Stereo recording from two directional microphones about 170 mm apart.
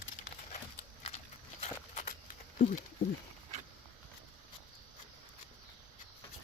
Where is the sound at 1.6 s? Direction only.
45° left (ahead or behind).